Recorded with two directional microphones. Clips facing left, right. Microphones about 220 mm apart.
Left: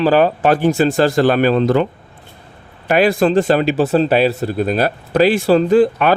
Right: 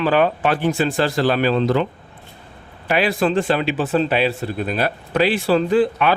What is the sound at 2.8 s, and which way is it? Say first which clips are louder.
Speech: left 5 dB; 45° left (ahead or behind).